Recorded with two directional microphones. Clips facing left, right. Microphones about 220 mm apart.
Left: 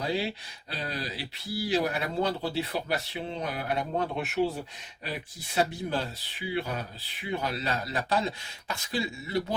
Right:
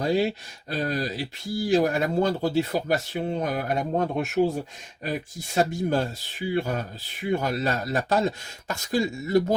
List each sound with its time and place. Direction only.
0.0 s speech: 45° right (ahead or behind)
5.5 s speech: 45° right (ahead or behind)